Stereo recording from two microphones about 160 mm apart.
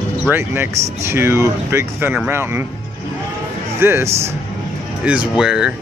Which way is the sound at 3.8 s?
15° right (ahead or behind).